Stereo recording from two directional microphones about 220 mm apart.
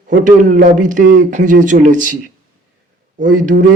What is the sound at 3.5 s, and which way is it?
Speech, 40° right (ahead or behind).